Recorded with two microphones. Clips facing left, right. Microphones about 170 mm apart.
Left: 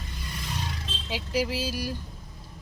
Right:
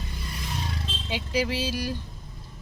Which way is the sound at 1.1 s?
5° left (ahead or behind).